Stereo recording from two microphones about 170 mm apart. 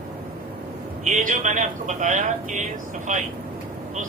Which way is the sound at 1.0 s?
45° right (ahead or behind).